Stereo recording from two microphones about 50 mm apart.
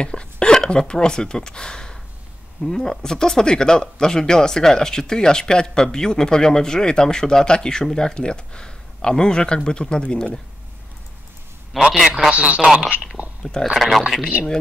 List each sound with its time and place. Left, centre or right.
0.0 s speech: centre
11.8 s a man's voice: centre
12.3 s speech: right
13.4 s speech: centre